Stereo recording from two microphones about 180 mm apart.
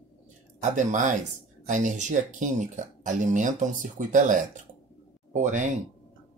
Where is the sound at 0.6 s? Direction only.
45° right (ahead or behind).